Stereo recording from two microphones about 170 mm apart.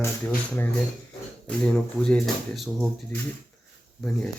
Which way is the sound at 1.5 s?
5° left (ahead or behind).